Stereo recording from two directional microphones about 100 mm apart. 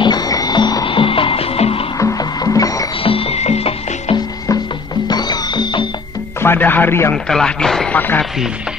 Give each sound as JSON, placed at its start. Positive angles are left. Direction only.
{"t": 0.0, "sound": "music", "side_deg": 45}
{"t": 0.8, "sound": "music", "side_deg": 60}
{"t": 2.0, "sound": "music", "side_deg": 35}
{"t": 3.0, "sound": "music", "side_deg": 65}
{"t": 5.0, "sound": "music", "side_deg": 45}
{"t": 6.4, "sound": "speech", "side_deg": 20}
{"t": 7.2, "sound": "speech", "side_deg": 5}